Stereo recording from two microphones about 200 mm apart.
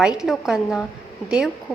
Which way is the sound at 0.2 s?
5° right (ahead or behind).